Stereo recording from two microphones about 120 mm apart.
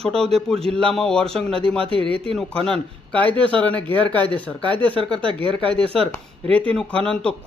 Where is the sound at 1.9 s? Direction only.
50° right (ahead or behind).